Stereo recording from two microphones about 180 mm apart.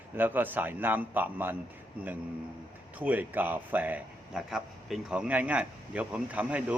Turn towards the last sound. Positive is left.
turn(degrees=-5)  # may be behind; listen again after turning